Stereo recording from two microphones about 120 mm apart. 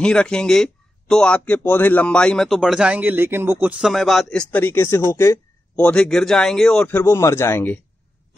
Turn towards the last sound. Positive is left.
turn(degrees=15)  # may be behind; listen again after turning